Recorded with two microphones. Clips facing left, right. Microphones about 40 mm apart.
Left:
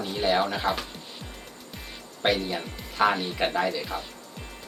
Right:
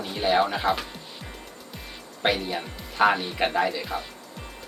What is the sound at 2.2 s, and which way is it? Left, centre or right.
Speech, centre.